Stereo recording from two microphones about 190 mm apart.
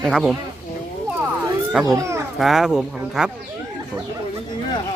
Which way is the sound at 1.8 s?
15° right (ahead or behind).